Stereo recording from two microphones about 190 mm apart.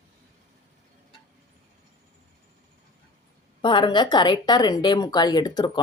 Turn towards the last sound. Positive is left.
turn(degrees=20)  # may be behind; listen again after turning